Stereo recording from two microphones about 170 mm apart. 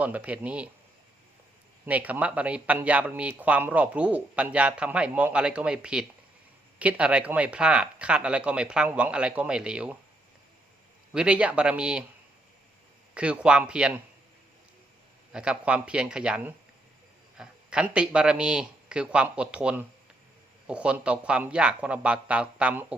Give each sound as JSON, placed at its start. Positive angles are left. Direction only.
{"t": 0.0, "sound": "speech", "side_deg": -10}
{"t": 1.9, "sound": "speech", "side_deg": -10}
{"t": 11.1, "sound": "speech", "side_deg": -5}
{"t": 13.1, "sound": "speech", "side_deg": -5}
{"t": 15.3, "sound": "speech", "side_deg": -5}